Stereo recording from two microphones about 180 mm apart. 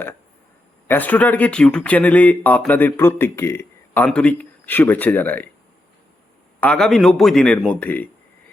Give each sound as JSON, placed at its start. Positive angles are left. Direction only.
{"t": 0.9, "sound": "speech", "side_deg": 10}
{"t": 6.6, "sound": "speech", "side_deg": 5}